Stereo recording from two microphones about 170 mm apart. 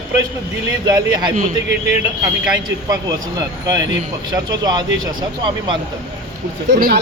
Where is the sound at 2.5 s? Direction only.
25° right (ahead or behind).